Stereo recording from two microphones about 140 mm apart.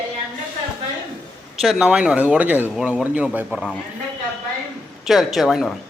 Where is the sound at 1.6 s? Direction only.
5° right (ahead or behind).